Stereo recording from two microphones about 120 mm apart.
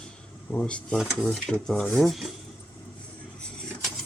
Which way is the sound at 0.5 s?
10° left (ahead or behind).